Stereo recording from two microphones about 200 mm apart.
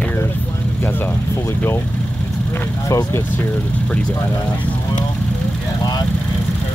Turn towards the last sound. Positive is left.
turn(degrees=20)  # may be behind; listen again after turning